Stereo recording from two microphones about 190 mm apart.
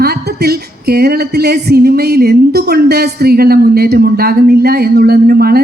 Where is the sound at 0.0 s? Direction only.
55° right (ahead or behind).